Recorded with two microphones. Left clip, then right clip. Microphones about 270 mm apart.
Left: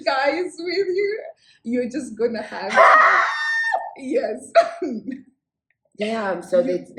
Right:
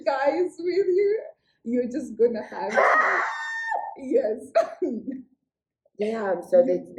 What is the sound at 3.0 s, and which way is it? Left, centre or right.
Crowing, centre.